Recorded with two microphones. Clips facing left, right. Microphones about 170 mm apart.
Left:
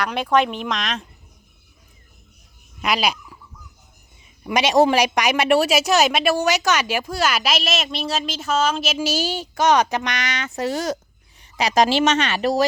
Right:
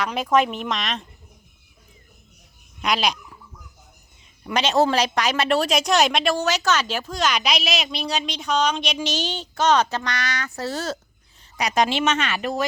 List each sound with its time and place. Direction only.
0.0 s speech: centre (ahead or behind)
2.8 s speech: 5° left (ahead or behind)
4.4 s a woman's voice: 10° left (ahead or behind)
11.3 s a sound: 25° left (ahead or behind)
11.8 s speech: 40° left (ahead or behind)